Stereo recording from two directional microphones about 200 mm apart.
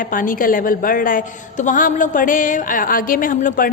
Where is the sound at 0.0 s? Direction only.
40° left (ahead or behind).